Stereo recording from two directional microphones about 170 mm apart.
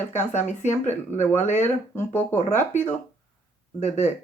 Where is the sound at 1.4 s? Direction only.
45° left (ahead or behind).